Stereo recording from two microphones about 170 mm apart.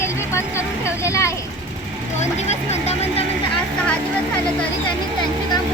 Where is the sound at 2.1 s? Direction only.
40° left (ahead or behind).